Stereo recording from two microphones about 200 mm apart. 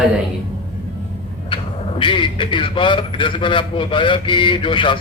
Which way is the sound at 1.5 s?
25° left (ahead or behind).